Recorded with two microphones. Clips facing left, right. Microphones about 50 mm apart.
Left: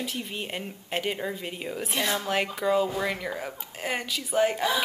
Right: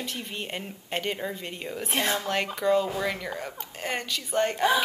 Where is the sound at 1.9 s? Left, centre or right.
Right.